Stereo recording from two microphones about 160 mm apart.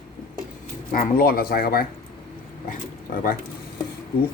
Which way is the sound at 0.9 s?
65° left (ahead or behind).